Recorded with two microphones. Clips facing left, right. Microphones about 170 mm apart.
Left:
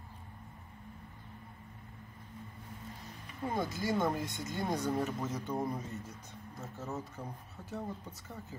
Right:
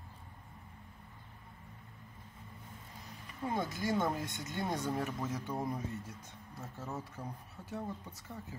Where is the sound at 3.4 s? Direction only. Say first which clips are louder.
Left 1 dB; centre (ahead or behind).